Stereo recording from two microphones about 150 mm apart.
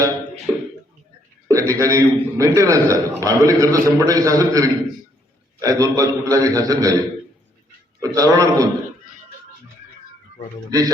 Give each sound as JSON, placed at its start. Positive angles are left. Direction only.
{"t": 1.5, "sound": "a man's voice", "side_deg": -20}
{"t": 10.7, "sound": "a man's voice", "side_deg": -25}